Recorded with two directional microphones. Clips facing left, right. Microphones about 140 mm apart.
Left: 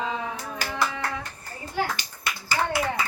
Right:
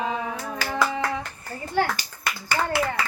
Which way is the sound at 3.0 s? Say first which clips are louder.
Right 1 dB; 70° right (ahead or behind).